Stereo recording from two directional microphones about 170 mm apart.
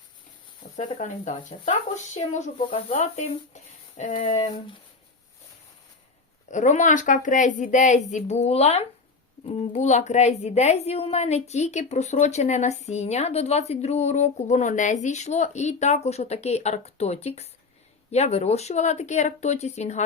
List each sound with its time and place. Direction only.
0.8 s a woman's voice: 45° left (ahead or behind)
4.4 s speech: 30° left (ahead or behind)
6.5 s a woman's voice: 45° left (ahead or behind)